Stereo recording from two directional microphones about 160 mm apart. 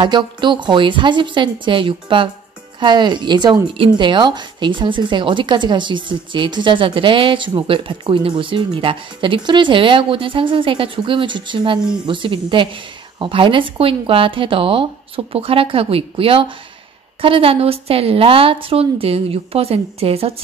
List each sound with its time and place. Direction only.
0.0 s a woman's voice: 30° right (ahead or behind)